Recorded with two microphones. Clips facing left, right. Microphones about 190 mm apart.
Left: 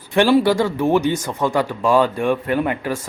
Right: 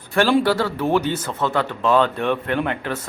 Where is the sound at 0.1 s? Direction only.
15° left (ahead or behind).